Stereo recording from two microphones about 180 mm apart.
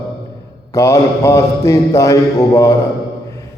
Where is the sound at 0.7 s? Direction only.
15° left (ahead or behind).